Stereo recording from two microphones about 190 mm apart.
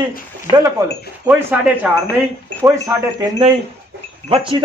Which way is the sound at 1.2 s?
5° right (ahead or behind).